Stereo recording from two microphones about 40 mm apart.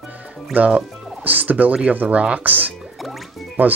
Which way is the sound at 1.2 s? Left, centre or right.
Right.